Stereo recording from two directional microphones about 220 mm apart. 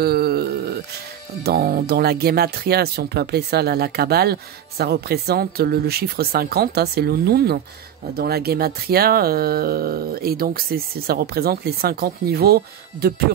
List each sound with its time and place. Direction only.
0.0 s wail: 45° right (ahead or behind)
1.4 s speech: 45° right (ahead or behind)